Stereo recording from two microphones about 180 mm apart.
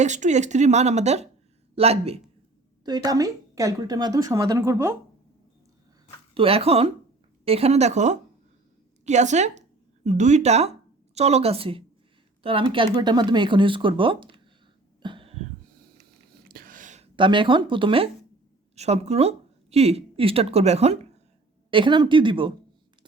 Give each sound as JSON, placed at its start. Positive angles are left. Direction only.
{"t": 0.0, "sound": "a woman's voice", "side_deg": -40}
{"t": 2.8, "sound": "a woman's voice", "side_deg": -20}
{"t": 6.3, "sound": "a woman's voice", "side_deg": -30}
{"t": 15.0, "sound": "a sound", "side_deg": -30}
{"t": 16.5, "sound": "a sound", "side_deg": -50}
{"t": 17.2, "sound": "a woman's voice", "side_deg": -25}